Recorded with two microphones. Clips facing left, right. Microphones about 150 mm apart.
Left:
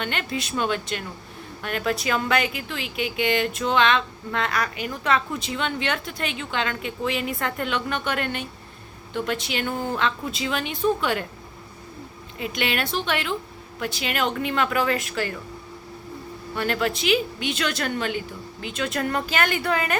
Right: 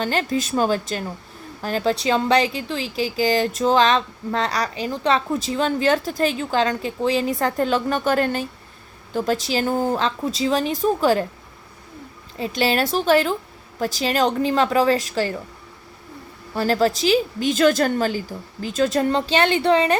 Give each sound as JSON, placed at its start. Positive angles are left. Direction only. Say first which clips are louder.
{"t": 0.0, "sound": "speech", "louder": "right 6 dB", "side_deg": -35}
{"t": 12.4, "sound": "speech", "louder": "right 6 dB", "side_deg": -35}
{"t": 16.6, "sound": "speech", "louder": "right 6 dB", "side_deg": -35}